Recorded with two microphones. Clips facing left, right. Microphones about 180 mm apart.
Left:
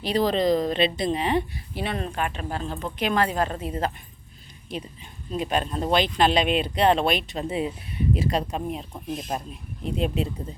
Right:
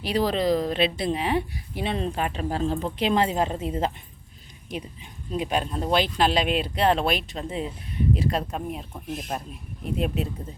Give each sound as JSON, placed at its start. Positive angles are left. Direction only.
{"t": 0.0, "sound": "a woman's voice", "side_deg": -10}
{"t": 5.3, "sound": "speech", "side_deg": -10}